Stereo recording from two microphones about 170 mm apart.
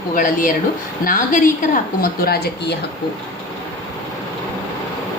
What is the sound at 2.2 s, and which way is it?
Speech, 65° left (ahead or behind).